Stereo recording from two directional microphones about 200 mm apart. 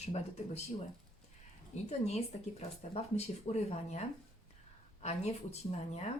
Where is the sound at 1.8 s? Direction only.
35° left (ahead or behind).